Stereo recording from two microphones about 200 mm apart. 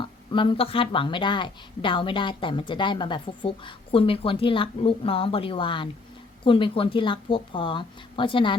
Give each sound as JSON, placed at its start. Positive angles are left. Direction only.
{"t": 0.0, "sound": "speech", "side_deg": 25}